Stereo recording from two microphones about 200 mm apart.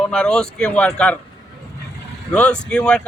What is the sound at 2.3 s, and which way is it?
Speech, 5° left (ahead or behind).